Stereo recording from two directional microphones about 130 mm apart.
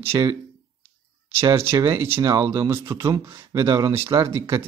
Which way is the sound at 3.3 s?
40° right (ahead or behind).